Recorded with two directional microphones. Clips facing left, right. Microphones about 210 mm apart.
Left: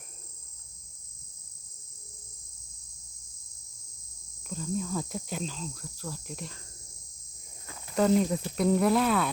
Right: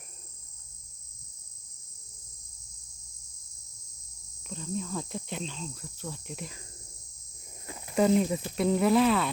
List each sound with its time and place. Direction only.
4.4 s speech: centre (ahead or behind)
7.9 s speech: 5° right (ahead or behind)